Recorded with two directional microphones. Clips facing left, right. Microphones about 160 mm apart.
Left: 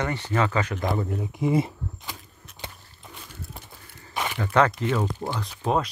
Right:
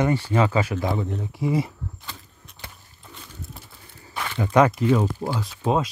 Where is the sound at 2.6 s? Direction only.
20° left (ahead or behind).